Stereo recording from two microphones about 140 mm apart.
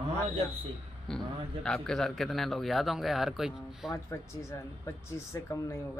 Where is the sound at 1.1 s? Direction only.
5° left (ahead or behind).